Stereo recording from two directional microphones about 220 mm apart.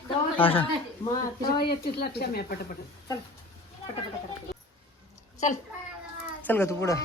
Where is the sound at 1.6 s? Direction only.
45° left (ahead or behind).